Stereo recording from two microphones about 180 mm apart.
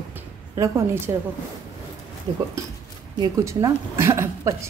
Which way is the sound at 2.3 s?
25° right (ahead or behind).